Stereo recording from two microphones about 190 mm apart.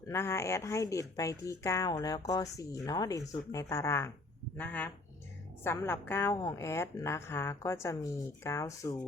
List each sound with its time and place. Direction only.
0.1 s speech: 15° left (ahead or behind)